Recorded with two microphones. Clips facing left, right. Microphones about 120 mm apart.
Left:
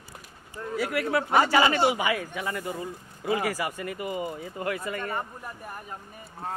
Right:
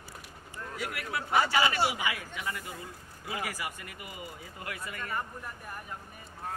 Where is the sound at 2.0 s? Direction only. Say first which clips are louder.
Left 7 dB; 55° left (ahead or behind).